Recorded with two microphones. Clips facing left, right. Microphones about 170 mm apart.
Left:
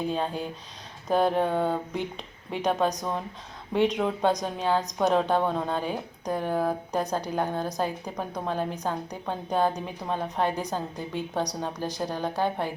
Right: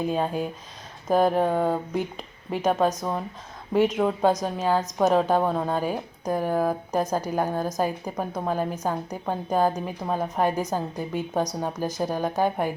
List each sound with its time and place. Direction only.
0.1 s a woman's voice: 5° right (ahead or behind)